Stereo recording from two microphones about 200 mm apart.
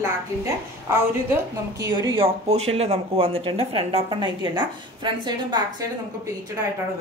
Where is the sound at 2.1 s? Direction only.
30° right (ahead or behind).